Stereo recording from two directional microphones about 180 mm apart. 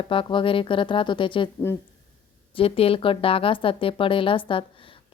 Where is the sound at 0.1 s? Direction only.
30° left (ahead or behind).